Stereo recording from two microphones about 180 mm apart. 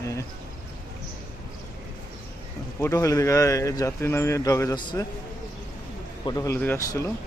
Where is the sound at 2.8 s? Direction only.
15° left (ahead or behind).